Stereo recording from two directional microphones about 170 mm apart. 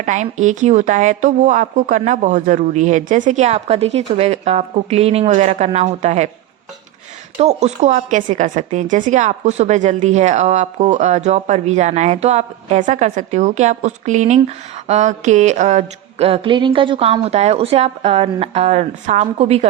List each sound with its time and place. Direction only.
0.0 s a woman's voice: 45° right (ahead or behind)
7.3 s a woman's voice: 40° right (ahead or behind)